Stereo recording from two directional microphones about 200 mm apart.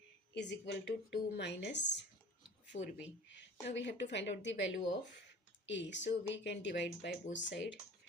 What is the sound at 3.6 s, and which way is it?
Speech, 60° left (ahead or behind).